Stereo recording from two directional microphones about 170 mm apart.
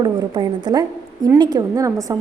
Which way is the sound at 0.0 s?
25° right (ahead or behind).